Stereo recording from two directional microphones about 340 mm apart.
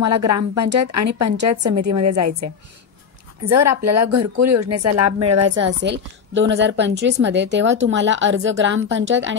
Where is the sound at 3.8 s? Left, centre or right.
Right.